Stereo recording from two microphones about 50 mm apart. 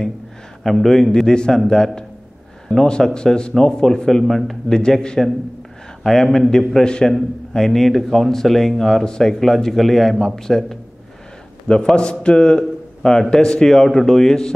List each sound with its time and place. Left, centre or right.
0.7 s a man's voice: centre